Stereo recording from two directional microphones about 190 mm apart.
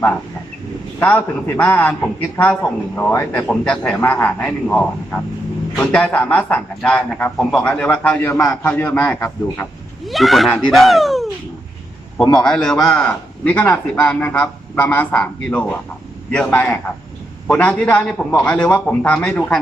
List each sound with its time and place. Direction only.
0.9 s a man's voice: 10° left (ahead or behind)
10.1 s speech: centre (ahead or behind)
12.3 s a man's voice: 5° left (ahead or behind)